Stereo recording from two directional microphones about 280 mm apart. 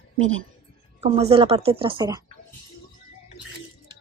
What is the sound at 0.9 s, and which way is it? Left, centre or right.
Speech, right.